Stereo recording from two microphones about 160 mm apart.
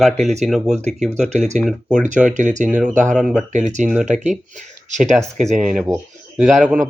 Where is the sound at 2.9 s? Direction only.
50° right (ahead or behind).